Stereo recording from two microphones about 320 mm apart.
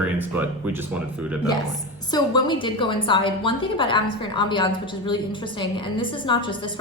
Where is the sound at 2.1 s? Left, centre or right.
Centre.